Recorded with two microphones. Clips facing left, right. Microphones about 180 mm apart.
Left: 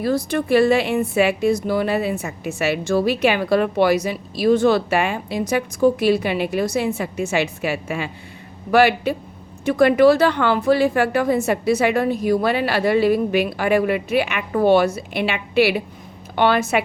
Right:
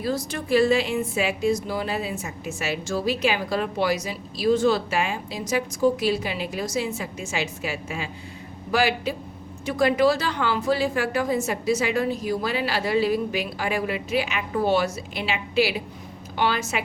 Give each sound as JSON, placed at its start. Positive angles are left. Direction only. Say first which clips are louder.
{"t": 0.0, "sound": "a woman's voice", "louder": "left 7 dB", "side_deg": 60}